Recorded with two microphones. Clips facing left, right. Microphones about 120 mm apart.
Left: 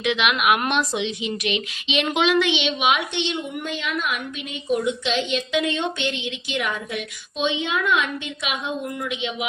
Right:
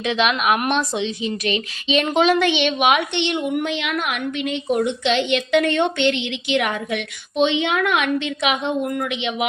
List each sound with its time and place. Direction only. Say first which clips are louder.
0.0 s a woman's voice: right 2 dB; 35° right (ahead or behind); by 9.5 s 70° right (ahead or behind)